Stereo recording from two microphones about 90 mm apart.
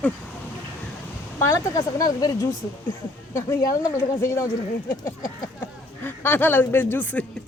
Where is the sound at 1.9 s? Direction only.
45° left (ahead or behind).